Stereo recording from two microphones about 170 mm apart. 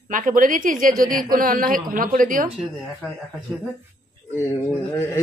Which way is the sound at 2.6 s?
Centre (ahead or behind).